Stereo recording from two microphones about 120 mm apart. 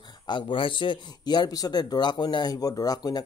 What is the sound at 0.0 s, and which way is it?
Speech, 40° left (ahead or behind).